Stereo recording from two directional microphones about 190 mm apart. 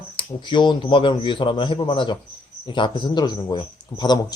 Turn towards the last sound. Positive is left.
turn(degrees=20)  # may be behind; listen again after turning